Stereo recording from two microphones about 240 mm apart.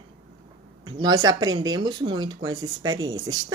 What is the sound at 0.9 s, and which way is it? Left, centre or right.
Speech, centre.